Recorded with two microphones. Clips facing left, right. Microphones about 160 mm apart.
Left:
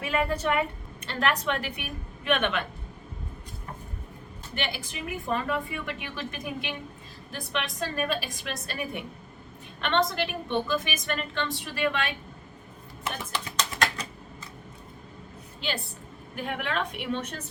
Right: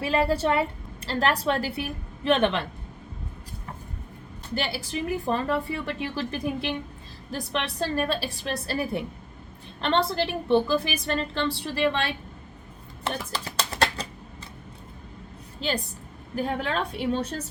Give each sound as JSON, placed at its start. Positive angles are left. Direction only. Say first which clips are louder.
{"t": 0.0, "sound": "a woman's voice", "louder": "right 4 dB", "side_deg": -35}
{"t": 4.5, "sound": "a woman's voice", "louder": "right 5 dB", "side_deg": -35}
{"t": 13.1, "sound": "typing", "louder": "right 3 dB", "side_deg": -35}
{"t": 16.3, "sound": "a woman's voice", "louder": "right 4 dB", "side_deg": -35}